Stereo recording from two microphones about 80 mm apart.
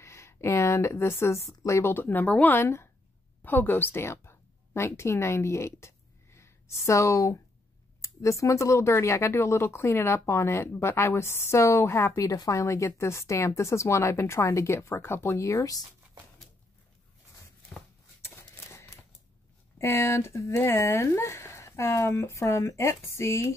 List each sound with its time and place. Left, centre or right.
0.0 s a woman's voice: left; by 2.6 s centre
2.6 s speech: left
12.3 s speech: left
17.7 s a sound: centre
18.2 s shuffling cards: left
19.8 s speech: left